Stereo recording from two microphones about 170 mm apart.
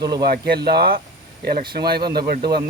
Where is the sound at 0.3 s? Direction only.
70° right (ahead or behind).